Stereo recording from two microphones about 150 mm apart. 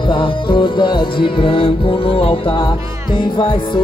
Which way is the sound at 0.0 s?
35° left (ahead or behind).